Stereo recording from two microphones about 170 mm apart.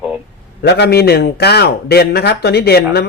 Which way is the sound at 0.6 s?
80° left.